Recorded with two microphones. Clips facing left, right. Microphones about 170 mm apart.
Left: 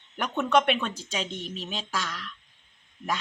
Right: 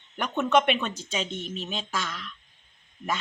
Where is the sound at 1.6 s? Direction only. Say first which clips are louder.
Left 1 dB; centre (ahead or behind).